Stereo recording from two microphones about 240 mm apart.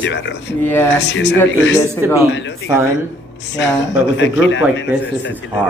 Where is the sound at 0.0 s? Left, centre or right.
Left.